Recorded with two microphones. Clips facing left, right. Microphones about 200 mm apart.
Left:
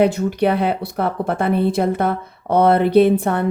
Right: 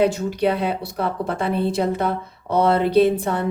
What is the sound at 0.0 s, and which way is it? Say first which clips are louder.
Speech: left 3 dB; 60° left (ahead or behind).